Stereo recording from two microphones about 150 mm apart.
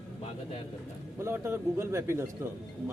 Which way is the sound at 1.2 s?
15° right (ahead or behind).